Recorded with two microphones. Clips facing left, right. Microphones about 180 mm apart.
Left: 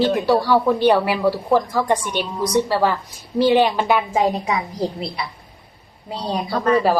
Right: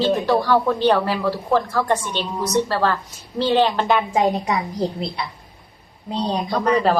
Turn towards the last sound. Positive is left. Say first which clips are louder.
# left 1 dB
turn(degrees=-15)  # may be behind; listen again after turning